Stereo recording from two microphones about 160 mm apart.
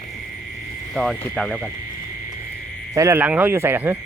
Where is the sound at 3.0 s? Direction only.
20° right (ahead or behind).